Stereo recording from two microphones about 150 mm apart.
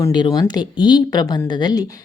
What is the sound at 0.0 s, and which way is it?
Speech, 30° left (ahead or behind).